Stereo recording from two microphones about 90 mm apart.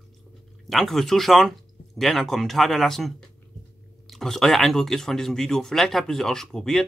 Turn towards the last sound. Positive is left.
turn(degrees=5)  # may be behind; listen again after turning